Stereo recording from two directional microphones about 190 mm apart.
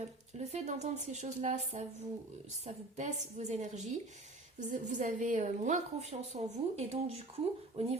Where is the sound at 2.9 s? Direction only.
35° right (ahead or behind).